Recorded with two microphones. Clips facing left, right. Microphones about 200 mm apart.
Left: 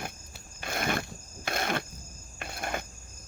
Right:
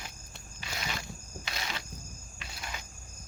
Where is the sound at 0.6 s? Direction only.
55° left (ahead or behind).